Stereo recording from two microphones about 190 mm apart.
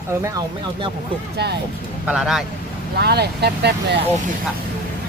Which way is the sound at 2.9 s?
60° right (ahead or behind).